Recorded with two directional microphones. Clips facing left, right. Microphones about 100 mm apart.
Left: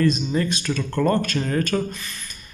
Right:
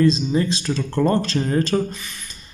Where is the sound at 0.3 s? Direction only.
25° right (ahead or behind).